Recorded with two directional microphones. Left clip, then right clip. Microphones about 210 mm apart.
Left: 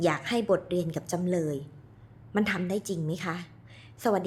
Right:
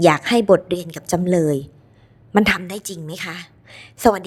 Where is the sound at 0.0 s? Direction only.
40° right (ahead or behind).